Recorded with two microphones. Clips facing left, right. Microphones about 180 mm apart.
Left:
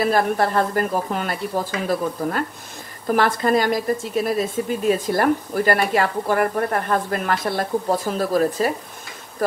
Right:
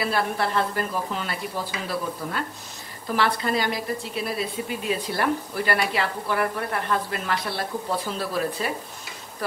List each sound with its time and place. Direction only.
0.0 s speech: 45° left (ahead or behind)